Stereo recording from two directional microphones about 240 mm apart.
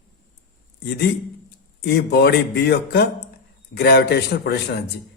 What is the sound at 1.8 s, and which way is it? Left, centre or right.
Speech, left.